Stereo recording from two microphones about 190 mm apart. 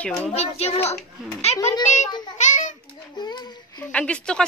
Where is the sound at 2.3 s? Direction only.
40° left (ahead or behind).